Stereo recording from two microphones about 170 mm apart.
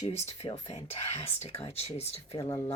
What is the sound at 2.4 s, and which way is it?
Speech, 15° left (ahead or behind).